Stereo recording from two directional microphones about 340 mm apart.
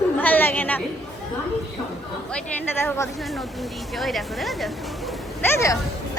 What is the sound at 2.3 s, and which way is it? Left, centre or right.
Speech, centre.